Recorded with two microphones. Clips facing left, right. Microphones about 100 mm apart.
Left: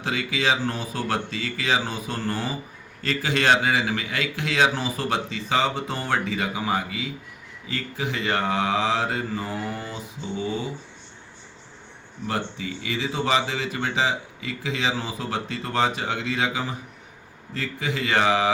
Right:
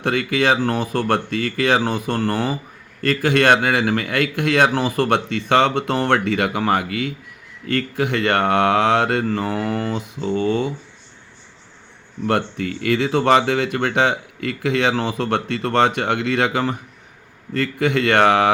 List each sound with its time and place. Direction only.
0.0 s speech: 55° right (ahead or behind)
12.2 s speech: 60° right (ahead or behind)